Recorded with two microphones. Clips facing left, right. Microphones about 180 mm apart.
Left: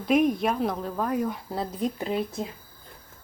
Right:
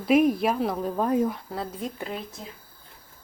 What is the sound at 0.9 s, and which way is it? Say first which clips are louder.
Speech: right 3 dB; 25° right (ahead or behind).